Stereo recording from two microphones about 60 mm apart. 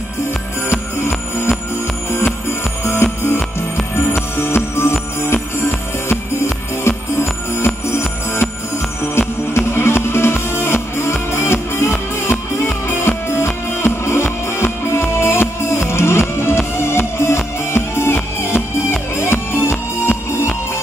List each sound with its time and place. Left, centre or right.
0.7 s music: left
2.8 s music: left
9.8 s music: left